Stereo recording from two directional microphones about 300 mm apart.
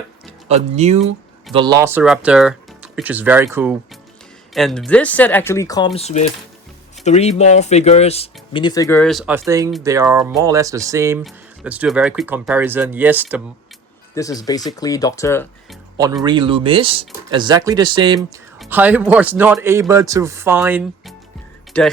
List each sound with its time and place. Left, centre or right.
0.4 s speech: right; by 13.4 s centre
14.2 s speech: centre
16.2 s speech: centre